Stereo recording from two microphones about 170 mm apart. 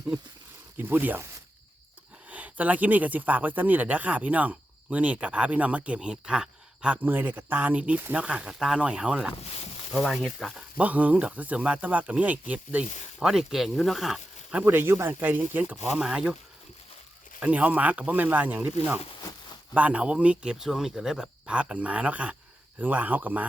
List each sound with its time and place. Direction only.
0.8 s speech: 10° right (ahead or behind)
2.3 s speech: 10° right (ahead or behind)
14.6 s speech: 10° right (ahead or behind)
17.4 s speech: 10° right (ahead or behind)